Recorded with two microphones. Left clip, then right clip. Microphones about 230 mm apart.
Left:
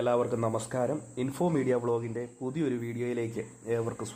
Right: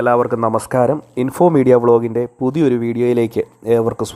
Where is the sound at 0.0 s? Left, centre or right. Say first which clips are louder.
Right 13 dB; right.